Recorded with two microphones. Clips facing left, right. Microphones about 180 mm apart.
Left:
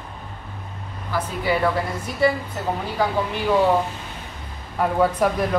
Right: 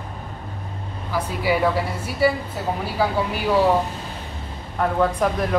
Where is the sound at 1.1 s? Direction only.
10° right (ahead or behind).